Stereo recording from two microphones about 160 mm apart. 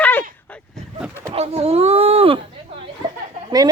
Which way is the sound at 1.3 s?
40° right (ahead or behind).